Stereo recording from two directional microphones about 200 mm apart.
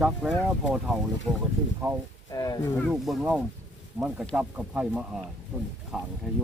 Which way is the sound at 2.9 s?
5° right (ahead or behind).